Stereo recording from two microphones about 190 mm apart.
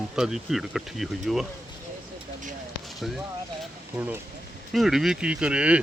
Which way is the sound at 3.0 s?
Centre (ahead or behind).